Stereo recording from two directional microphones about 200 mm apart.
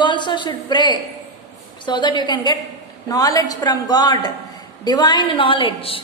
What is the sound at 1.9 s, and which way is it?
A man's voice, 20° left (ahead or behind).